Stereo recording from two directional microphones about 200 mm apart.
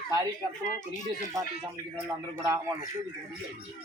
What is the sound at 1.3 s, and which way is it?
Speech, 15° right (ahead or behind).